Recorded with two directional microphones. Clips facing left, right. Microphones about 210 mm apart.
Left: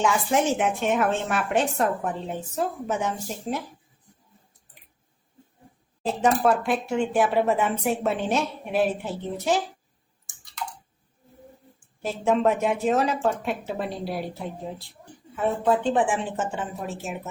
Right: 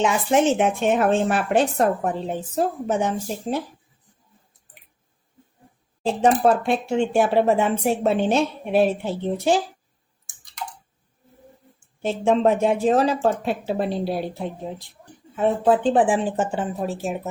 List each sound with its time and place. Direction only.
0.0 s a woman's voice: 25° right (ahead or behind)
6.3 s speech: 25° right (ahead or behind)
12.0 s a woman's voice: 25° right (ahead or behind)